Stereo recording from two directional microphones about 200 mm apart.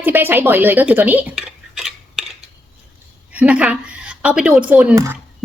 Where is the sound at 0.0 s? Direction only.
10° right (ahead or behind).